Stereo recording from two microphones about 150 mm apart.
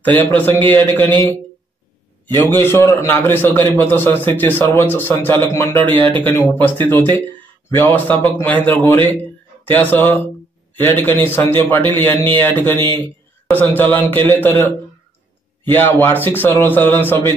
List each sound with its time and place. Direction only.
0.0 s a man's voice: 10° left (ahead or behind)
1.1 s a man's voice: 30° right (ahead or behind)
2.3 s a man's voice: 20° left (ahead or behind)
15.7 s a man's voice: 15° left (ahead or behind)